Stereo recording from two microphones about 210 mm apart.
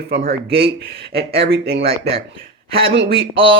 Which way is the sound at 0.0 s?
50° right (ahead or behind).